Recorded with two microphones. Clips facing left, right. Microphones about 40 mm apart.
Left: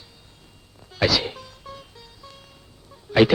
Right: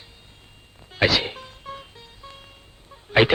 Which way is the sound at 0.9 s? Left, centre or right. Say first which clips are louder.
Right 1 dB; right.